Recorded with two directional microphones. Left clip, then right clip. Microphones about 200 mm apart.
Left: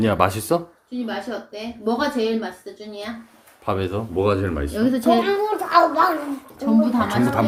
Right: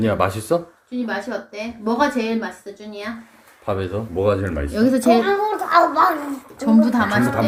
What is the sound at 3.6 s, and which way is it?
A man's voice, 5° left (ahead or behind).